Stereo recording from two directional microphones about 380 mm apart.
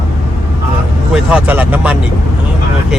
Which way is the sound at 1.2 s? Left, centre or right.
Centre.